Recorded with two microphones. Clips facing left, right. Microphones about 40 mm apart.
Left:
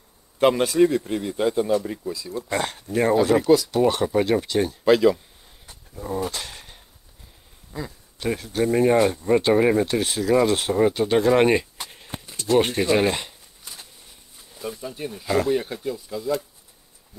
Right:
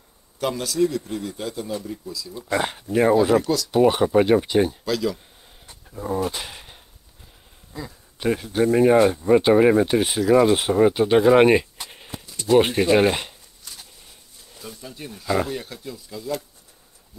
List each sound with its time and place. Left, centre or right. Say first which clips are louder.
0.4 s speech: left 5 dB; left
2.3 s speech: right 2 dB; centre
2.6 s speech: right 4 dB; centre
3.3 s speech: left 4 dB; centre
3.7 s speech: right 3 dB; centre
4.8 s speech: left 8 dB; left
5.7 s a sound: right 3 dB; centre
8.2 s speech: right 3 dB; centre
13.7 s a sound: left 1 dB; centre
14.5 s speech: left 6 dB; centre